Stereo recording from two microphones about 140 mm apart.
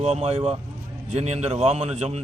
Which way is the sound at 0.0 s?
50° right (ahead or behind).